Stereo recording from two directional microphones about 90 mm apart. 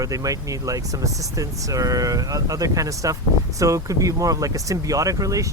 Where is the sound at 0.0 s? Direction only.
40° right (ahead or behind).